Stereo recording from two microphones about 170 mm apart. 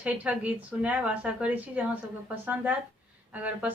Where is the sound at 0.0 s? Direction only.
5° right (ahead or behind).